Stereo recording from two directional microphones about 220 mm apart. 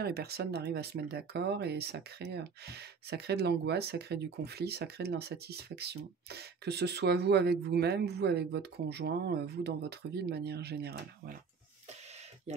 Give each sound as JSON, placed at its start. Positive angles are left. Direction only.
{"t": 0.0, "sound": "speech", "side_deg": -45}